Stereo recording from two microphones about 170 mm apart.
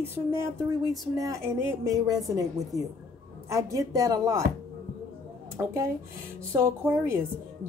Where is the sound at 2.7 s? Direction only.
20° left (ahead or behind).